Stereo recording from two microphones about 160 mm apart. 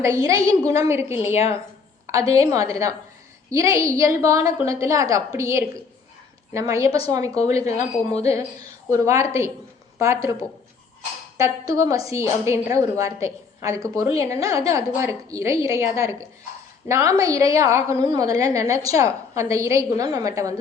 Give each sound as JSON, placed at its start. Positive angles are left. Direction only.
{"t": 0.0, "sound": "a woman's voice", "side_deg": -20}
{"t": 1.2, "sound": "a woman's voice", "side_deg": 40}
{"t": 2.3, "sound": "a woman's voice", "side_deg": -20}
{"t": 8.1, "sound": "a woman's voice", "side_deg": 40}
{"t": 8.9, "sound": "a woman's voice", "side_deg": -20}
{"t": 11.3, "sound": "a woman's voice", "side_deg": -20}